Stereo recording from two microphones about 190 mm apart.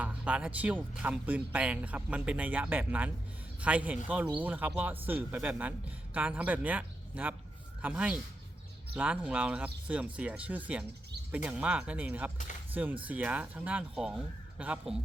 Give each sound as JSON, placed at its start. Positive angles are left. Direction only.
{"t": 0.0, "sound": "speech", "side_deg": -5}